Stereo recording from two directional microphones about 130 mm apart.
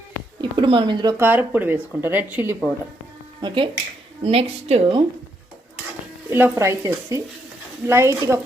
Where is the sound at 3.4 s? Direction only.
40° right (ahead or behind).